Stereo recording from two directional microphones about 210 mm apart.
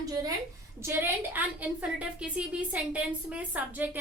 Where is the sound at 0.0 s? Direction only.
15° right (ahead or behind).